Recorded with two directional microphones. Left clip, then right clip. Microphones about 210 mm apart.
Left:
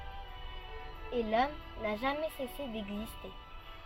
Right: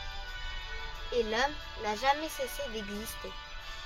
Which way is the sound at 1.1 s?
35° right (ahead or behind).